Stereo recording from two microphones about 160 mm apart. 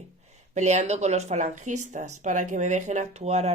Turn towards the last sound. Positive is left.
turn(degrees=-40)  # may be behind; listen again after turning